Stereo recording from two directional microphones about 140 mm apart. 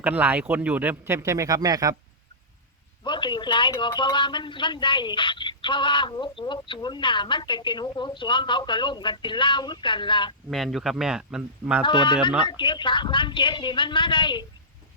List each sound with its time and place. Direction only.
0.0 s speech: 10° right (ahead or behind)
3.0 s speech: 35° left (ahead or behind)
10.5 s speech: centre (ahead or behind)
11.8 s speech: 35° left (ahead or behind)